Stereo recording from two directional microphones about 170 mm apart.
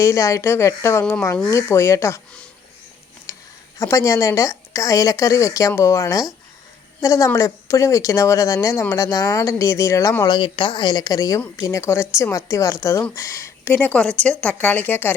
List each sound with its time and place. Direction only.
0.0 s a woman's voice: 15° left (ahead or behind)
3.3 s a sound: 15° left (ahead or behind)
3.8 s a woman's voice: 20° left (ahead or behind)